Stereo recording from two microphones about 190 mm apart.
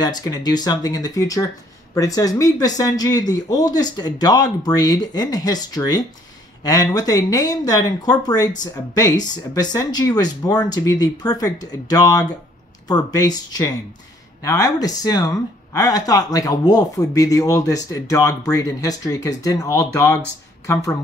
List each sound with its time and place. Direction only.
0.0 s speech: 20° left (ahead or behind)